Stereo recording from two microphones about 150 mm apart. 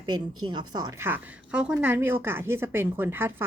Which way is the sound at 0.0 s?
30° right (ahead or behind).